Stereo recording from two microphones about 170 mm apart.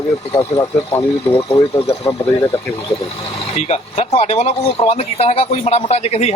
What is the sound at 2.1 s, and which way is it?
Speech, 40° left (ahead or behind).